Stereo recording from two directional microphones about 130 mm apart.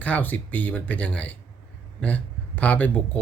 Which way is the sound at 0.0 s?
10° left (ahead or behind).